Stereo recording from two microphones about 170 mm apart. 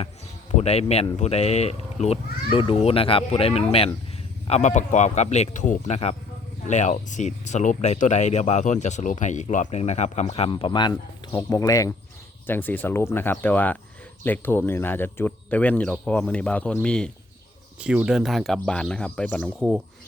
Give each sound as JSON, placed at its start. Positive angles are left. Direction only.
{"t": 0.5, "sound": "speech", "side_deg": 40}
{"t": 17.7, "sound": "speech", "side_deg": -5}